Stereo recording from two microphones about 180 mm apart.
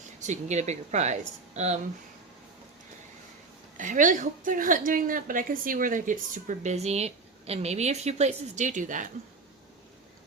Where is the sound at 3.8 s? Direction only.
45° right (ahead or behind).